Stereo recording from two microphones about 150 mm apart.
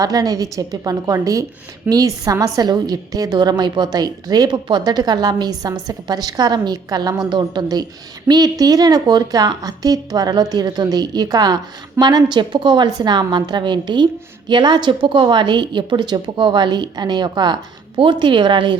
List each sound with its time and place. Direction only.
0.0 s a woman's voice: 25° right (ahead or behind)